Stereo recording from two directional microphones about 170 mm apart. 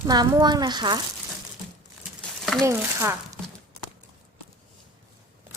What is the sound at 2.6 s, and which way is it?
Speech, 15° right (ahead or behind).